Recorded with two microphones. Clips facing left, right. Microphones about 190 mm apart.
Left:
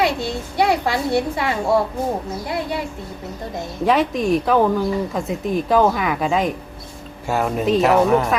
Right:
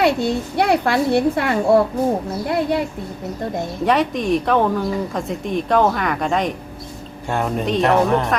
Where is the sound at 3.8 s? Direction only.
Centre (ahead or behind).